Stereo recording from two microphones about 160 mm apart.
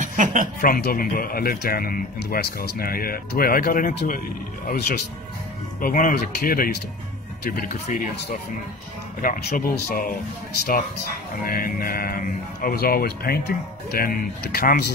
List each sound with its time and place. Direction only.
0.0 s a sound: 50° right (ahead or behind)
0.6 s speech: 65° left (ahead or behind)
4.6 s speech: 85° left
5.8 s speech: 60° left (ahead or behind)
9.2 s speech: 65° left (ahead or behind)
11.4 s speech: 65° left (ahead or behind)